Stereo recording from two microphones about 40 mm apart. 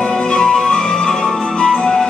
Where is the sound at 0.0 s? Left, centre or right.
Left.